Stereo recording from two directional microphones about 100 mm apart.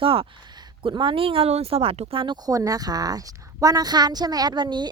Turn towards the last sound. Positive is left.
turn(degrees=-45)  # may be behind; listen again after turning